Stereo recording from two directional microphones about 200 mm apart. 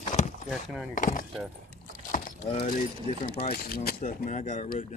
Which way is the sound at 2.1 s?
40° left (ahead or behind).